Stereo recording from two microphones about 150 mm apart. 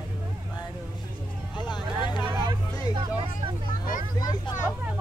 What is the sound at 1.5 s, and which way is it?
Vehicle, 30° left (ahead or behind).